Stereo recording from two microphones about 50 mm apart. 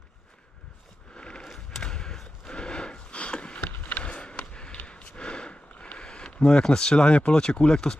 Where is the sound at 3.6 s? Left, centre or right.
Left.